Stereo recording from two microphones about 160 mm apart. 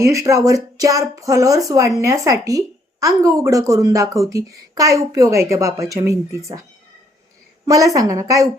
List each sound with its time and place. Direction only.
0.0 s a woman's voice: 20° right (ahead or behind)